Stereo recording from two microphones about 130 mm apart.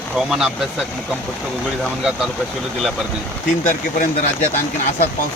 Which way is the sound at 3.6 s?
75° left (ahead or behind).